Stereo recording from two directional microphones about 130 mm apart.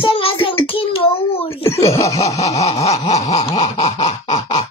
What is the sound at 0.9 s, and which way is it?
Child singing, 45° left (ahead or behind).